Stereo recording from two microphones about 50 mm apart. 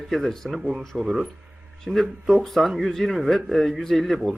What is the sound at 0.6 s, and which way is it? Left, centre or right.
Speech, centre.